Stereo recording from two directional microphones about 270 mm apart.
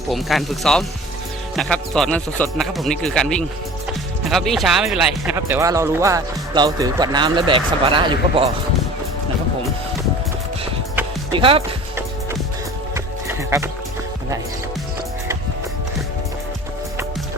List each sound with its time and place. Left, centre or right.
0.1 s speech: centre
11.3 s speech: centre
12.9 s music: centre